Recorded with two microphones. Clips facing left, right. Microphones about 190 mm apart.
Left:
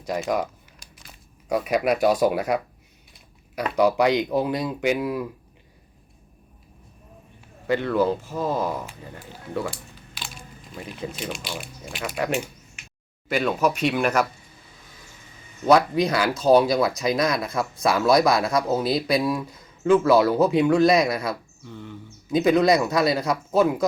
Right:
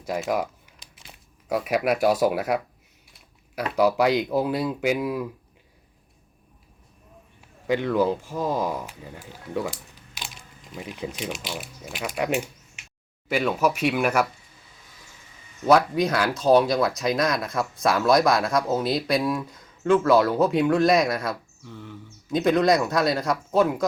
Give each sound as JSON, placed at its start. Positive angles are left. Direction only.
{"t": 0.0, "sound": "speech", "side_deg": -5}
{"t": 0.8, "sound": "a sound", "side_deg": -25}
{"t": 1.5, "sound": "speech", "side_deg": -5}
{"t": 7.7, "sound": "speech", "side_deg": -15}
{"t": 10.8, "sound": "speech", "side_deg": -15}
{"t": 15.6, "sound": "speech", "side_deg": 0}